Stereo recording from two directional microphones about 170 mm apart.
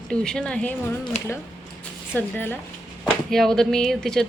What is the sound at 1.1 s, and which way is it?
Speech, 40° left (ahead or behind).